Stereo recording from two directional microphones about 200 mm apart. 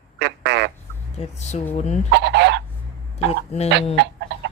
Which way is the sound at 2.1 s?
60° right (ahead or behind).